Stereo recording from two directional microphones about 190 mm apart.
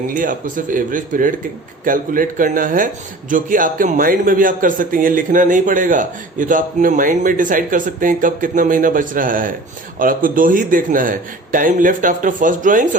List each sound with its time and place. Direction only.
0.1 s speech: 45° right (ahead or behind)